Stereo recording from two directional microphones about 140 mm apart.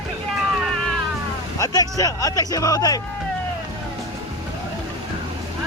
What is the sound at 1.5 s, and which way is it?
Speech, 25° left (ahead or behind).